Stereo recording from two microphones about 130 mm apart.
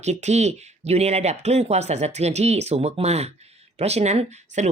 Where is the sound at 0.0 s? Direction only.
60° right (ahead or behind).